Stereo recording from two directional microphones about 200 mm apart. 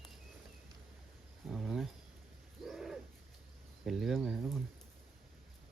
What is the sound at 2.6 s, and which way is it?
Bird, centre (ahead or behind).